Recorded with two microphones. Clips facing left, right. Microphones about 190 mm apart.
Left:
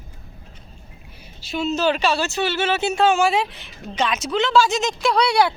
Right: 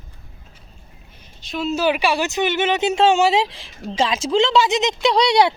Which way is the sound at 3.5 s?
90° right.